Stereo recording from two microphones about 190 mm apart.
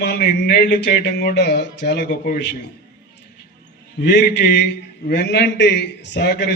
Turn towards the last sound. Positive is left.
turn(degrees=60)  # may be behind; listen again after turning